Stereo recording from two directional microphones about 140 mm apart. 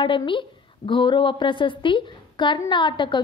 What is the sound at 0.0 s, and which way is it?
A woman's voice, 35° left (ahead or behind).